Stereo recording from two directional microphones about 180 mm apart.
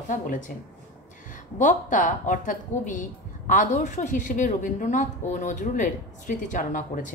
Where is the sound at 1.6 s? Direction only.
45° left (ahead or behind).